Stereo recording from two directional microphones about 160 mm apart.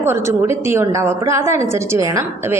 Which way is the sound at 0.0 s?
15° right (ahead or behind).